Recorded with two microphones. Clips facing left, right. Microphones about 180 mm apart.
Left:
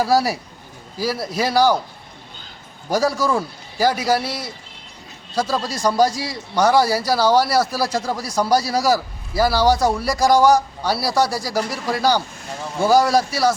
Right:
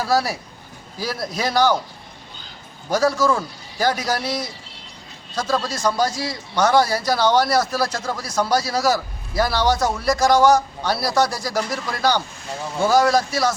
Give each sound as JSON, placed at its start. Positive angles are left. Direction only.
{"t": 0.0, "sound": "speech", "side_deg": 10}
{"t": 2.9, "sound": "speech", "side_deg": 10}
{"t": 8.4, "sound": "a man's voice", "side_deg": 35}
{"t": 8.7, "sound": "speech", "side_deg": 10}